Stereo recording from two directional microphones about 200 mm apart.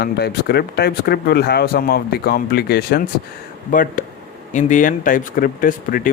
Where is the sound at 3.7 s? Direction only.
40° left (ahead or behind).